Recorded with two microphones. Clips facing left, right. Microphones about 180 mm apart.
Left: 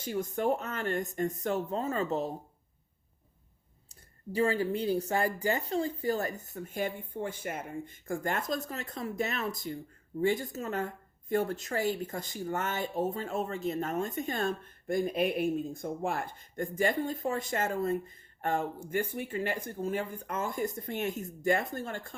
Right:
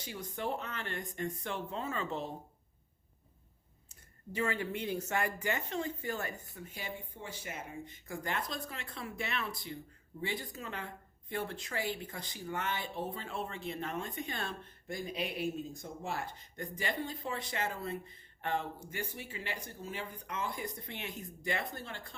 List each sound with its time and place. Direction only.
0.0 s a woman's voice: 45° left (ahead or behind)
3.8 s a woman's voice: 35° left (ahead or behind)